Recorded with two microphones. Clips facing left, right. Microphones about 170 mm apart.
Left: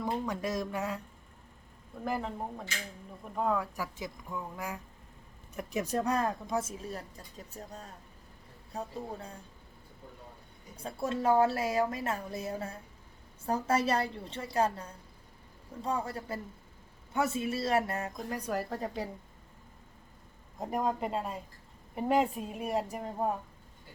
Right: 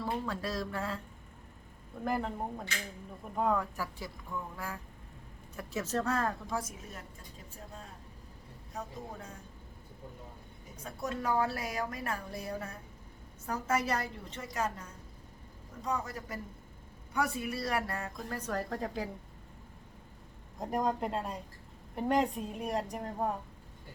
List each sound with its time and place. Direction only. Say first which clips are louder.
0.0 s a woman's voice: left 2 dB; 20° left (ahead or behind)
2.0 s a woman's voice: right 1 dB; centre (ahead or behind)
3.8 s a woman's voice: left 2 dB; 15° left (ahead or behind)
8.7 s speech: left 4 dB; 30° left (ahead or behind)
10.8 s a woman's voice: left 5 dB; 30° left (ahead or behind); by 19.1 s centre (ahead or behind)
20.6 s a woman's voice: even; centre (ahead or behind)